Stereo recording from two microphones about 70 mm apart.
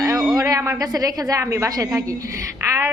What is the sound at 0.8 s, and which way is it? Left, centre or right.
Speech, right.